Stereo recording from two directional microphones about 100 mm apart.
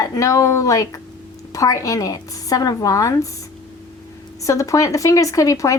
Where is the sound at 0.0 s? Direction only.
35° left (ahead or behind).